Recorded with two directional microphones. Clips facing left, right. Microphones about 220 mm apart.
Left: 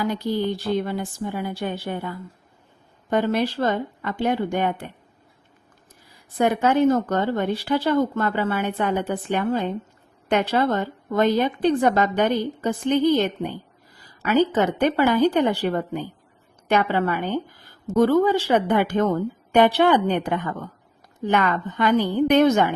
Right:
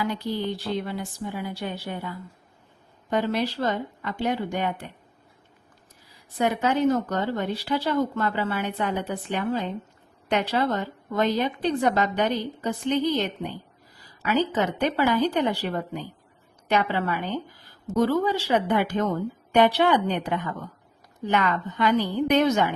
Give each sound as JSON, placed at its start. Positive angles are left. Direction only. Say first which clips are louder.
{"t": 0.0, "sound": "speech", "louder": "left 4 dB", "side_deg": 45}
{"t": 6.3, "sound": "speech", "louder": "left 4 dB", "side_deg": 50}